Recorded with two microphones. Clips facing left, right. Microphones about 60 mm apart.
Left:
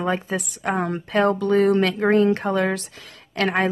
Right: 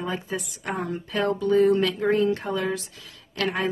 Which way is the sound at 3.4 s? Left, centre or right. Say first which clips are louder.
Left 4 dB; left.